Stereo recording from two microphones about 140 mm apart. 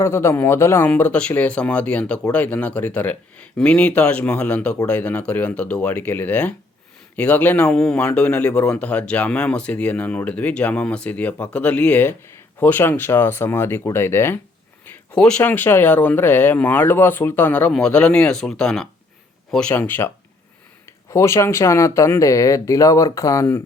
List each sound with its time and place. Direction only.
0.0 s a man's voice: 20° left (ahead or behind)
14.8 s a man's voice: 5° left (ahead or behind)